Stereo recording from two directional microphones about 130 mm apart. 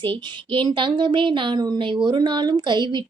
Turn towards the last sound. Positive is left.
turn(degrees=-35)  # may be behind; listen again after turning